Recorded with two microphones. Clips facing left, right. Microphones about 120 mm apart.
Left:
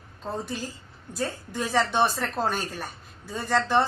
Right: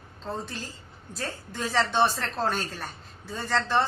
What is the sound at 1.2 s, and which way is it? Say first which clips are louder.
A woman's voice: left 3 dB; 15° left (ahead or behind).